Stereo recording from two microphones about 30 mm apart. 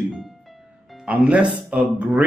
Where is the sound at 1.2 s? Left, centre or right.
Right.